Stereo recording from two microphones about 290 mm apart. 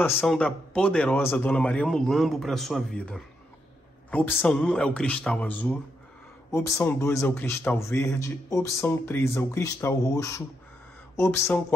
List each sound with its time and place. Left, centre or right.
0.0 s a man's voice: centre